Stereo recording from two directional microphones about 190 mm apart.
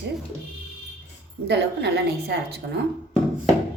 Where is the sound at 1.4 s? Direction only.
60° right (ahead or behind).